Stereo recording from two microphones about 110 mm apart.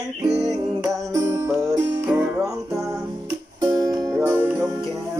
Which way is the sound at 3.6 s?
35° right (ahead or behind).